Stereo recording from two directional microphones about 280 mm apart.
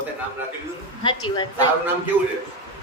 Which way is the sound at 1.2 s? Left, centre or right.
Centre.